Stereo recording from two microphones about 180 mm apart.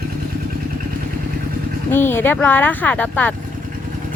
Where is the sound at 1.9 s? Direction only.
10° left (ahead or behind).